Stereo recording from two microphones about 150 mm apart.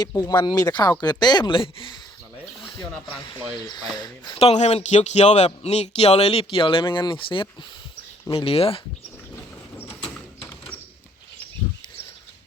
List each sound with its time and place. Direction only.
0.0 s chopping: 25° left (ahead or behind)
3.9 s chopping: 30° left (ahead or behind)
4.4 s speech: 45° left (ahead or behind)
9.7 s a sound: 10° left (ahead or behind)